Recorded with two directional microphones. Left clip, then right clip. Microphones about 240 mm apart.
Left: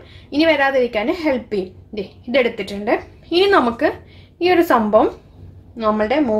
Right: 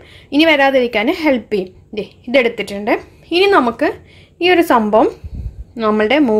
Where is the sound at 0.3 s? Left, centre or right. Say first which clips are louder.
Right 4 dB; right.